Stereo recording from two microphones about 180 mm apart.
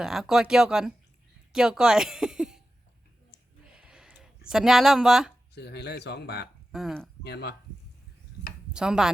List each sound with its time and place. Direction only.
0.0 s speech: centre (ahead or behind)
3.7 s a sound: 5° right (ahead or behind)
5.5 s speech: 70° left (ahead or behind)
6.7 s speech: centre (ahead or behind)
7.3 s speech: 65° left (ahead or behind)
8.7 s speech: 5° right (ahead or behind)